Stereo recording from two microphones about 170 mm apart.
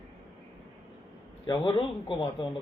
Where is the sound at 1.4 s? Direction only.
30° left (ahead or behind).